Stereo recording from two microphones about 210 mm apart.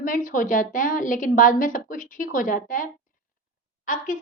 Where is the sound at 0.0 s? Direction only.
40° left (ahead or behind).